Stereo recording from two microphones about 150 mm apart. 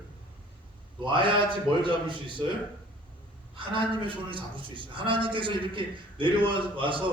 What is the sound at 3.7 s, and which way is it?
A man's voice, 35° right (ahead or behind).